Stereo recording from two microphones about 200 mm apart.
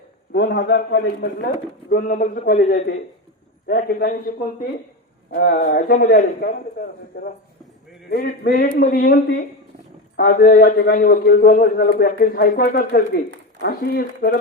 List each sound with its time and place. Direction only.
0.3 s a man's voice: 60° left (ahead or behind)
1.9 s a man's voice: 45° left (ahead or behind)
5.3 s a man's voice: 50° left (ahead or behind)